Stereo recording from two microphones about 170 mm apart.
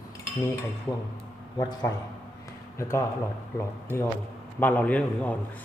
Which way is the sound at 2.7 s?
15° left (ahead or behind).